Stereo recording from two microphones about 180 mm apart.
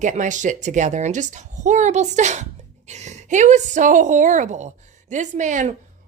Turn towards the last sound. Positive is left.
turn(degrees=-45)  # may be behind; listen again after turning